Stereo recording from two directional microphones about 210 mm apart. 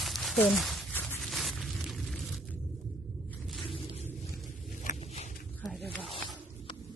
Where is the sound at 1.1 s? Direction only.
Centre (ahead or behind).